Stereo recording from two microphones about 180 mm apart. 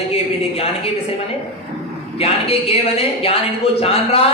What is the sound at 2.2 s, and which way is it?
Speech, 35° left (ahead or behind).